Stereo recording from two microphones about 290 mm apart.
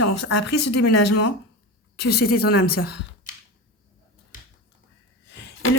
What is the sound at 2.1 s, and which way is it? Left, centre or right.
Speech, left.